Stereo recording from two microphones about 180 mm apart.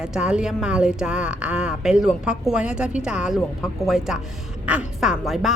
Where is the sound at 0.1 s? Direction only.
5° right (ahead or behind).